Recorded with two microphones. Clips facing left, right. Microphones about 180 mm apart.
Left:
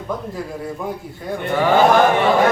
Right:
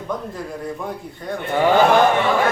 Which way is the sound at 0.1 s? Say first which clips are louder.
Left 1 dB; 5° left (ahead or behind).